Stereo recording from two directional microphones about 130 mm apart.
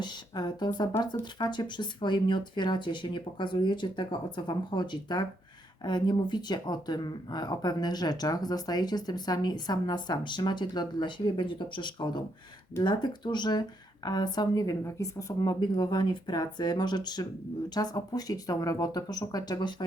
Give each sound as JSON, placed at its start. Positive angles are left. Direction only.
{"t": 0.0, "sound": "speech", "side_deg": 35}